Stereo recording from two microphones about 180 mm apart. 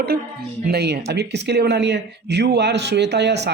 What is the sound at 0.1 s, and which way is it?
Speech, 60° right (ahead or behind).